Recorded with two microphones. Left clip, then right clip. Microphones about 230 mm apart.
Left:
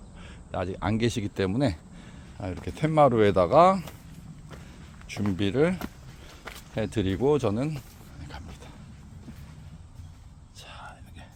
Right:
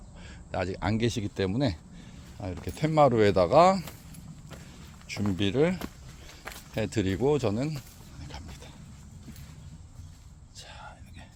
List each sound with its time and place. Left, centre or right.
0.2 s a sound: centre
0.9 s speech: centre
5.0 s speech: centre
8.2 s vehicle: centre
10.6 s whispering: centre